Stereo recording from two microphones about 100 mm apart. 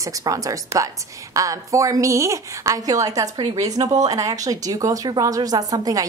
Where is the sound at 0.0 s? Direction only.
35° right (ahead or behind).